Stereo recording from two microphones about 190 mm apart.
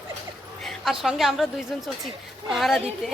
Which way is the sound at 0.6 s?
Centre (ahead or behind).